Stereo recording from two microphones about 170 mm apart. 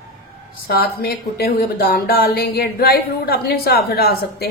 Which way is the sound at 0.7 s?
65° left (ahead or behind).